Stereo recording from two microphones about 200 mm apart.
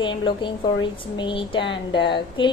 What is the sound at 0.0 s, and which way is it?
A woman's voice, 25° left (ahead or behind).